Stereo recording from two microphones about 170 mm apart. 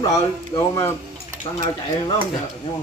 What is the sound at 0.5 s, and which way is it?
Speech, 30° left (ahead or behind).